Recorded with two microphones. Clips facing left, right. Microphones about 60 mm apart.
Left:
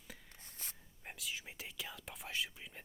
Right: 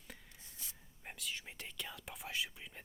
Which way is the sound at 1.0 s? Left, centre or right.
Centre.